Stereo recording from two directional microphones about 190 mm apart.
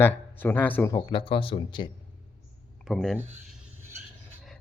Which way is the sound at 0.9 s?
25° left (ahead or behind).